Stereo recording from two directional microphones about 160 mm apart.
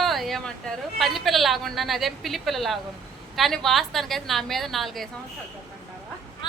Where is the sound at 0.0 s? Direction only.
Centre (ahead or behind).